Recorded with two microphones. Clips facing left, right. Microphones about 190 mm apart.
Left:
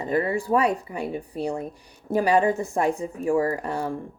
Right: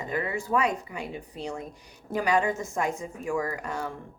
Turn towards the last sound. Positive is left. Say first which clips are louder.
# left 6 dB
turn(degrees=35)  # may be behind; listen again after turning